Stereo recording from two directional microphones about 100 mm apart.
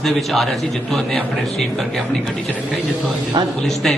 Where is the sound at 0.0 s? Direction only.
Centre (ahead or behind).